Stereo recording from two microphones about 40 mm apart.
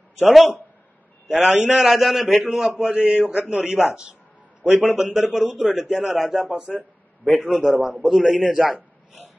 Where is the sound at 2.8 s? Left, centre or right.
Right.